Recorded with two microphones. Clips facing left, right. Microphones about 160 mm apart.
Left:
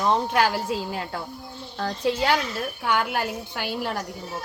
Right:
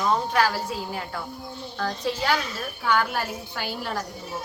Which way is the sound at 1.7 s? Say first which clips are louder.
Left 3 dB; 25° left (ahead or behind).